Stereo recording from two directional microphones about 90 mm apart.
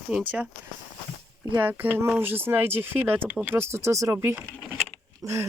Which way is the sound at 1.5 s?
20° right (ahead or behind).